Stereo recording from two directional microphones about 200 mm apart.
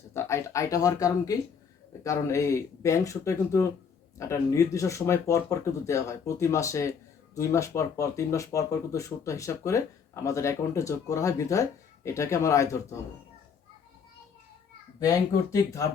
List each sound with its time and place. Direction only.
0.1 s speech: 15° left (ahead or behind)
14.9 s speech: 15° left (ahead or behind)